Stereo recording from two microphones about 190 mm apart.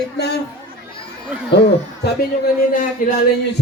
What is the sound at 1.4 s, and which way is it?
Speech, 60° left (ahead or behind).